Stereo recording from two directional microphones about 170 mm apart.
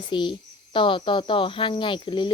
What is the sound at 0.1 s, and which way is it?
Speech, 30° left (ahead or behind).